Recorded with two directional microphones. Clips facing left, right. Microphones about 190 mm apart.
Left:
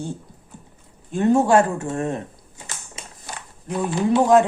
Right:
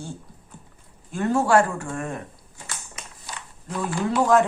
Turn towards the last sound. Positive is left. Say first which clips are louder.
# left 4 dB
turn(degrees=20)  # may be behind; listen again after turning